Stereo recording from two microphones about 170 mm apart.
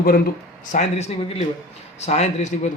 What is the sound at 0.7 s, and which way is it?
A man's voice, 40° left (ahead or behind).